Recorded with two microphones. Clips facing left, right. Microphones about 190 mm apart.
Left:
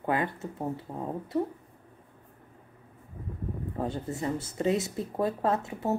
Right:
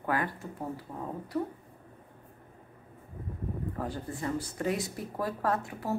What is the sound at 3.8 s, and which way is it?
Speech, 25° left (ahead or behind).